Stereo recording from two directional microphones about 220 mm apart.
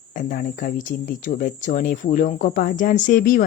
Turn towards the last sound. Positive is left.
turn(degrees=40)  # may be behind; listen again after turning